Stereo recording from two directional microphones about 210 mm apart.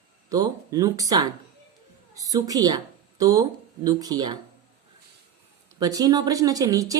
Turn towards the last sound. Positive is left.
turn(degrees=-15)  # may be behind; listen again after turning